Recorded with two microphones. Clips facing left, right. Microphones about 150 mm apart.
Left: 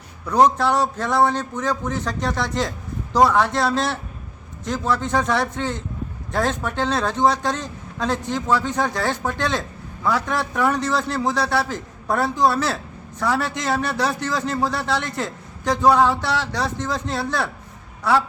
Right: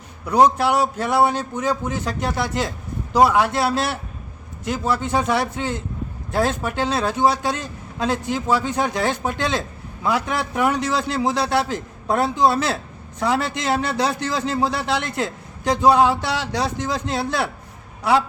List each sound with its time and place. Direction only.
0.3 s a man's voice: 10° right (ahead or behind)
14.8 s a man's voice: 15° right (ahead or behind)